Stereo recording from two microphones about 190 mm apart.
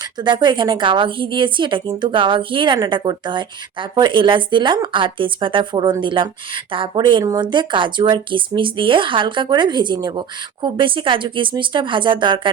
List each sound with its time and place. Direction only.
0.2 s a woman's voice: 25° right (ahead or behind)